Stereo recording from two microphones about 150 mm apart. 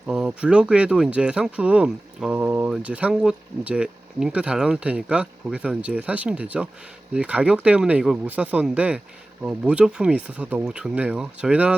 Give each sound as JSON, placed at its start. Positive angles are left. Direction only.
{"t": 0.1, "sound": "speech", "side_deg": -5}